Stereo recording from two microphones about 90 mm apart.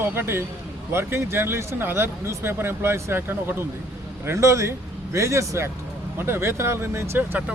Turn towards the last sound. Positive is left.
turn(degrees=-25)  # may be behind; listen again after turning